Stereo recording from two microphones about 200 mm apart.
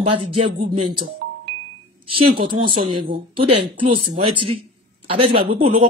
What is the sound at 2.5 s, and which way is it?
Speech, 25° right (ahead or behind).